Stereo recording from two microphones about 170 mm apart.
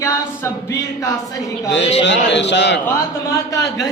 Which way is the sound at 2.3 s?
90° left.